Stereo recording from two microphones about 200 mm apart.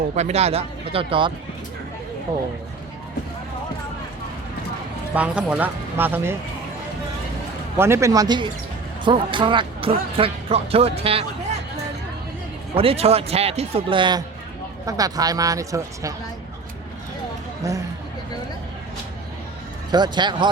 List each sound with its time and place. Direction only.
0.2 s speech: 30° right (ahead or behind)
5.1 s speech: 5° right (ahead or behind)
7.8 s speech: 15° right (ahead or behind); by 11.3 s 30° right (ahead or behind)
12.7 s speech: 30° right (ahead or behind)
17.6 s speech: 15° right (ahead or behind)
19.9 s speech: 20° right (ahead or behind)